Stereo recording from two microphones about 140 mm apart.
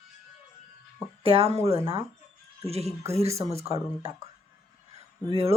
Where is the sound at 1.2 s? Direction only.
45° right (ahead or behind).